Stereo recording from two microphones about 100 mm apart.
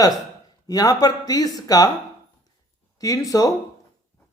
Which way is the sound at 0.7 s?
40° left (ahead or behind).